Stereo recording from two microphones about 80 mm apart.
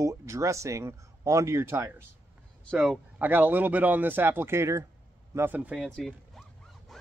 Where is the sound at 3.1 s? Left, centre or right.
Right.